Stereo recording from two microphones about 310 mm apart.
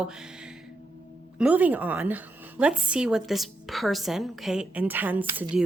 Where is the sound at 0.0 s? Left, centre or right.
Centre.